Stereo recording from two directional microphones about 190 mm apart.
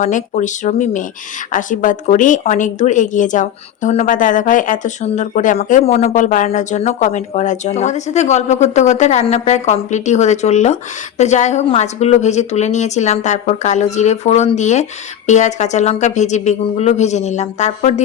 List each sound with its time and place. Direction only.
0.0 s a woman's voice: 40° left (ahead or behind)